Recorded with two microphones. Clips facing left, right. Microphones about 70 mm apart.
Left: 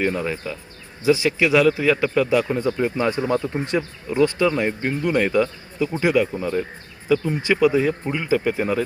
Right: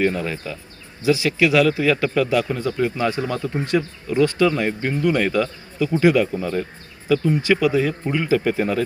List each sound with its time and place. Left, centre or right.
0.0 s speech: centre